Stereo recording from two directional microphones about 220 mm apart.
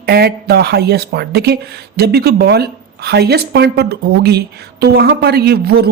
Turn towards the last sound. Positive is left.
turn(degrees=-45)  # may be behind; listen again after turning